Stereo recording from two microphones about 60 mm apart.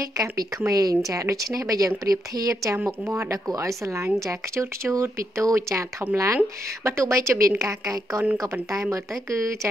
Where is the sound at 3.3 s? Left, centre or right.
Right.